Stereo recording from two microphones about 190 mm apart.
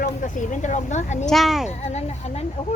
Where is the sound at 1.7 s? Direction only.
35° left (ahead or behind).